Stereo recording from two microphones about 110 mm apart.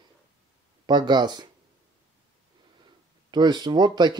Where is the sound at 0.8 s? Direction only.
40° right (ahead or behind).